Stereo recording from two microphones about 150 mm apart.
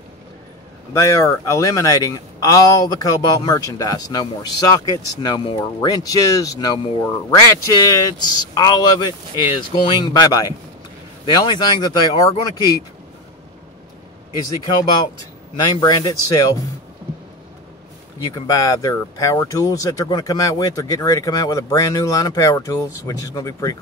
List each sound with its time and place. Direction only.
0.9 s speech: 20° left (ahead or behind)
15.6 s speech: 30° left (ahead or behind)
18.3 s speech: 20° left (ahead or behind)